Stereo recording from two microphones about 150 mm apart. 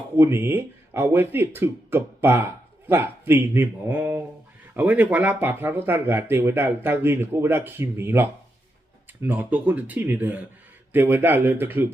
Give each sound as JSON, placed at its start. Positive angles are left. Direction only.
{"t": 0.2, "sound": "speech", "side_deg": -15}